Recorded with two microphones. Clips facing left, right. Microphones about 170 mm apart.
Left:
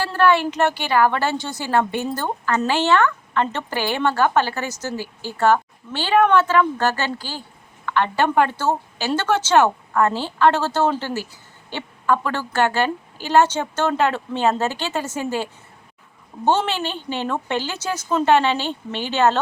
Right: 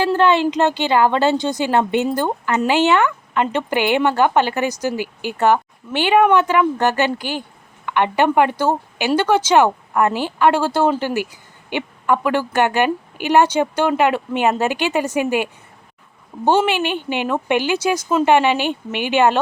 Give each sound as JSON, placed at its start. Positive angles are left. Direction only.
{"t": 0.0, "sound": "speech", "side_deg": -20}